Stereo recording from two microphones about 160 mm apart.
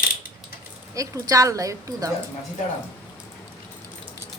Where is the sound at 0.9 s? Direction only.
20° right (ahead or behind).